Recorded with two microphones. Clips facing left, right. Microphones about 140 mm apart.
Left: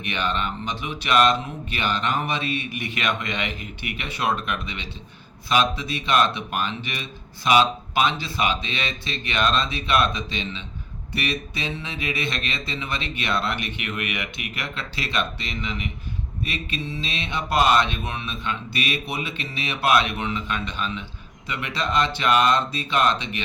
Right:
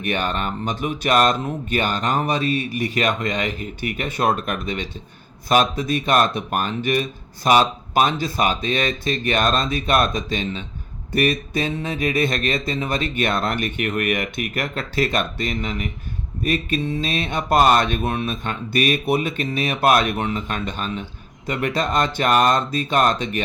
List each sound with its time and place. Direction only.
0.0 s speech: 45° right (ahead or behind)